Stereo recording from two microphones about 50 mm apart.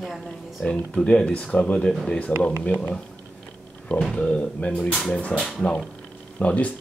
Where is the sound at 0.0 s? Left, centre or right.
Centre.